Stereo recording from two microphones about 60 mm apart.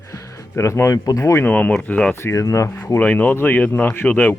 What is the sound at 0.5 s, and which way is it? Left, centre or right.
Speech, left.